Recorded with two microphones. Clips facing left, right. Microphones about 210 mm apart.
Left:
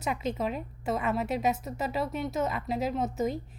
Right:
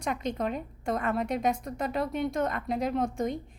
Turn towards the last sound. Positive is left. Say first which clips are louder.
# right 1 dB
turn(degrees=5)  # may be behind; listen again after turning